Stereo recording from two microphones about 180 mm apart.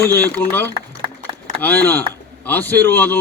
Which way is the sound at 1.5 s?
45° right (ahead or behind).